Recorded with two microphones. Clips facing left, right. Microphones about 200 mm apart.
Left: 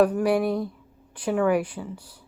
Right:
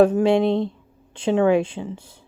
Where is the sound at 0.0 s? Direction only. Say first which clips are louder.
Right 5 dB; 25° right (ahead or behind).